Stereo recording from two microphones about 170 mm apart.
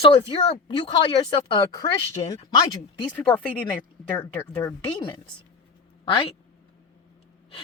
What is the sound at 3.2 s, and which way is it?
Speech, 10° left (ahead or behind).